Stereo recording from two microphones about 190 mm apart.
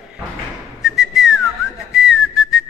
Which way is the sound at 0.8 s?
Centre (ahead or behind).